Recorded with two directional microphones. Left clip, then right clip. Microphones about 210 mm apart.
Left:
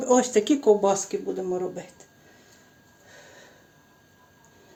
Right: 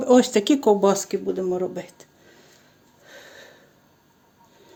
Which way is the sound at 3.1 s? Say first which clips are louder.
Right 5 dB; 50° right (ahead or behind).